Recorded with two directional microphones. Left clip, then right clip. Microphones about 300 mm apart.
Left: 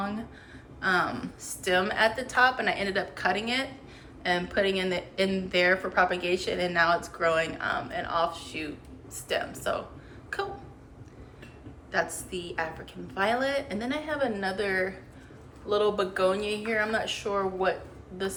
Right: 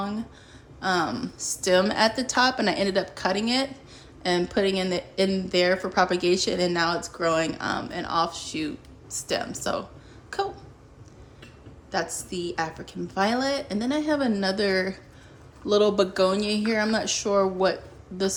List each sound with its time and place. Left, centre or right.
0.8 s a woman's voice: centre
11.9 s a woman's voice: centre